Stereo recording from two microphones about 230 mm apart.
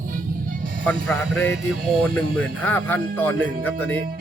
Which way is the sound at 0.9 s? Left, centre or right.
Centre.